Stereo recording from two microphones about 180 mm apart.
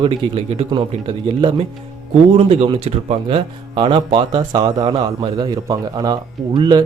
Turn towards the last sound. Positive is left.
turn(degrees=-25)  # may be behind; listen again after turning